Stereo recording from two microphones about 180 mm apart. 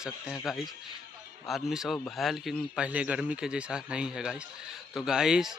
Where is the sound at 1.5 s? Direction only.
Centre (ahead or behind).